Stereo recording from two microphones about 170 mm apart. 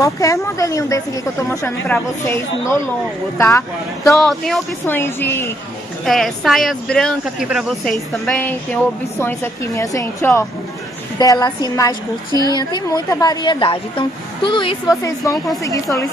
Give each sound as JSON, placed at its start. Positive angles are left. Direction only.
{"t": 0.0, "sound": "a woman's voice", "side_deg": 20}
{"t": 4.2, "sound": "speech", "side_deg": 0}
{"t": 4.8, "sound": "a woman's voice", "side_deg": 10}
{"t": 6.0, "sound": "a woman's voice", "side_deg": 0}
{"t": 15.0, "sound": "a woman's voice", "side_deg": 20}